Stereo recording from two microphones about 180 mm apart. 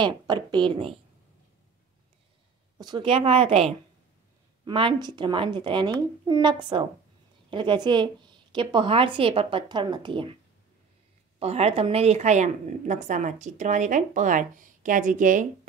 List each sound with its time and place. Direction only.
0.0 s a woman's voice: 25° right (ahead or behind)
2.8 s a woman's voice: 25° right (ahead or behind)
11.3 s a woman's voice: 35° right (ahead or behind)